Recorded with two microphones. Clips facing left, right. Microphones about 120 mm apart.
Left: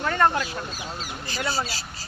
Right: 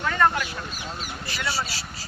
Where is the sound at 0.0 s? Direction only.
35° left (ahead or behind).